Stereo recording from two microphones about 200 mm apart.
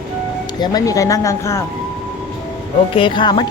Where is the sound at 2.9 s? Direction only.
25° left (ahead or behind).